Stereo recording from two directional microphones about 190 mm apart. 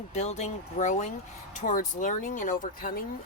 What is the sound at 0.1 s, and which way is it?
Speech, 35° left (ahead or behind).